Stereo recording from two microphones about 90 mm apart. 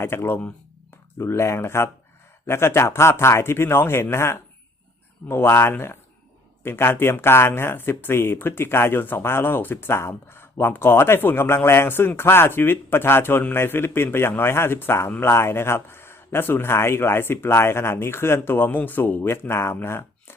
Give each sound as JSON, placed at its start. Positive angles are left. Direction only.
{"t": 0.0, "sound": "speech", "side_deg": 25}